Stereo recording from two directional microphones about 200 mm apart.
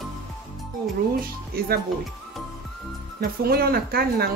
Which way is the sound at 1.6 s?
50° right (ahead or behind).